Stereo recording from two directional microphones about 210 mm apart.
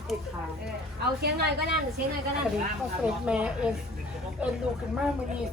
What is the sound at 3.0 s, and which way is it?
Speech, 5° right (ahead or behind).